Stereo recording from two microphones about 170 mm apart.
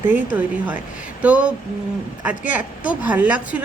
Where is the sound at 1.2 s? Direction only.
5° right (ahead or behind).